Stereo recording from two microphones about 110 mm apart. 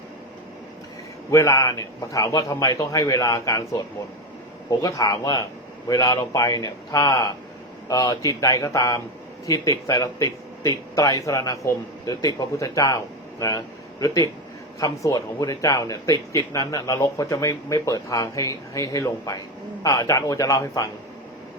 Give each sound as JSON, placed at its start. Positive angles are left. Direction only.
{"t": 1.3, "sound": "speech", "side_deg": 30}
{"t": 4.8, "sound": "speech", "side_deg": 35}